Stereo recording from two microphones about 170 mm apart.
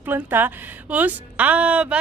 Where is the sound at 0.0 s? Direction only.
10° right (ahead or behind).